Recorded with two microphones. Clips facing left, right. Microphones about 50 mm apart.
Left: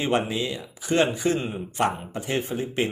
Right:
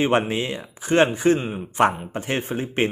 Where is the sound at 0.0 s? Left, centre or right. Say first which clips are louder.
Right 4 dB; right.